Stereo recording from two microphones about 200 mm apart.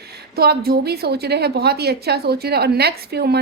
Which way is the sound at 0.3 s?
50° right (ahead or behind).